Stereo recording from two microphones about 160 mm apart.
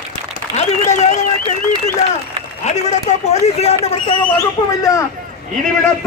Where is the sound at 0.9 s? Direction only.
45° left (ahead or behind).